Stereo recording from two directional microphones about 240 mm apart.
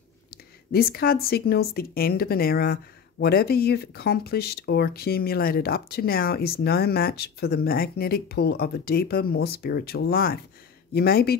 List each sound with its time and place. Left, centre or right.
0.7 s speech: left